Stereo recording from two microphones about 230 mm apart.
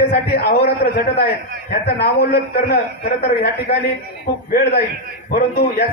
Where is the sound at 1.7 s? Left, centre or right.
Left.